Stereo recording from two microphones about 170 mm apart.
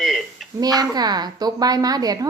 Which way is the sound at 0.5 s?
20° right (ahead or behind).